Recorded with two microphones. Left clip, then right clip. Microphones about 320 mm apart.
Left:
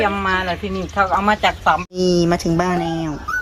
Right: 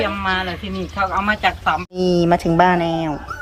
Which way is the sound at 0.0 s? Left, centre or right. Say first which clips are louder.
Left 2 dB; centre.